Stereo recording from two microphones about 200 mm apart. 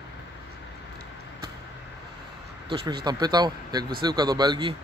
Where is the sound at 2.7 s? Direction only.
25° right (ahead or behind).